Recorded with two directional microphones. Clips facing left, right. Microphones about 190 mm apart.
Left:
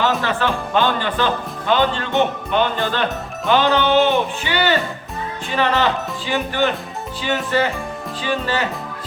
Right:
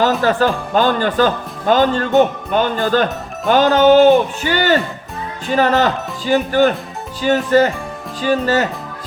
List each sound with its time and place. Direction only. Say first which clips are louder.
0.0 s speech: right 5 dB; 40° right (ahead or behind)